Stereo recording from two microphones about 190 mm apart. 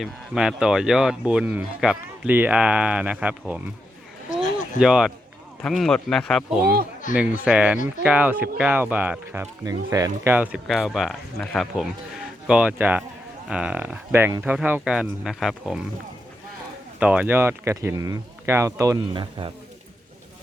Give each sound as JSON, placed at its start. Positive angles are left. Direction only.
{"t": 0.0, "sound": "speech", "side_deg": -5}
{"t": 4.8, "sound": "speech", "side_deg": -5}
{"t": 7.1, "sound": "speech", "side_deg": 45}
{"t": 7.4, "sound": "speech", "side_deg": -5}
{"t": 17.0, "sound": "speech", "side_deg": -5}